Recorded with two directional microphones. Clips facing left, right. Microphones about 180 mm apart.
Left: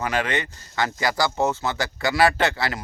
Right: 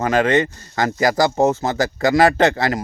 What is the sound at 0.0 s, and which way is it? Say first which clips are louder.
Speech: right 9 dB; 45° right (ahead or behind).